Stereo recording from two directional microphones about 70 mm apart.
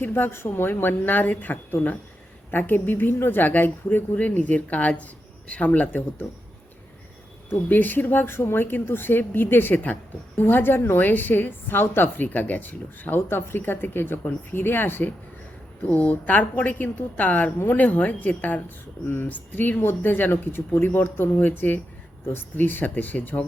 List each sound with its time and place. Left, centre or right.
0.0 s speech: left
7.5 s speech: left